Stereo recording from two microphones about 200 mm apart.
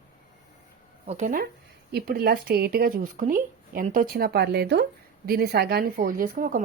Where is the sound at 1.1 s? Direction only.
40° right (ahead or behind).